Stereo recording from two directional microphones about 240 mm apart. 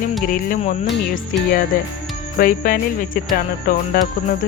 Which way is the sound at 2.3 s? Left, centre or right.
Left.